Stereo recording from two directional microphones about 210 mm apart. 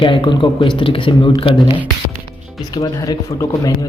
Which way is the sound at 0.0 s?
25° left (ahead or behind).